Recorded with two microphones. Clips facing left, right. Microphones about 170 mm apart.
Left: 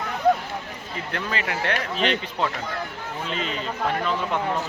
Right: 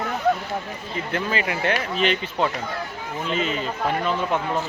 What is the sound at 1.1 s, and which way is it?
Speech, 5° right (ahead or behind).